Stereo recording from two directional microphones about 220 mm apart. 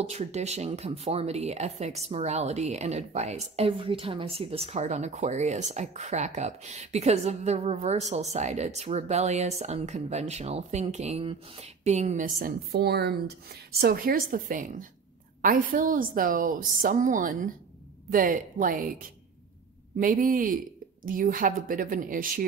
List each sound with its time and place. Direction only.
0.0 s speech: 30° right (ahead or behind)
20.0 s speech: 40° right (ahead or behind)